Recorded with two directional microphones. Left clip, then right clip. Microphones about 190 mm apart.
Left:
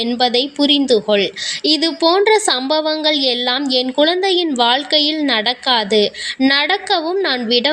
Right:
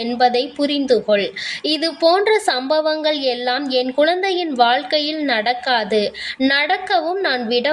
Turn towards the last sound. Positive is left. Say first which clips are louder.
# left 2 dB
turn(degrees=25)  # may be behind; listen again after turning